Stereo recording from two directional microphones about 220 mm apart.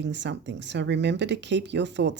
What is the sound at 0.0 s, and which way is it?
Speech, 55° right (ahead or behind).